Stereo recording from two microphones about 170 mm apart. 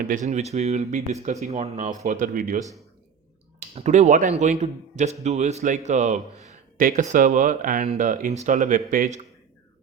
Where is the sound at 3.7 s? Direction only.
40° right (ahead or behind).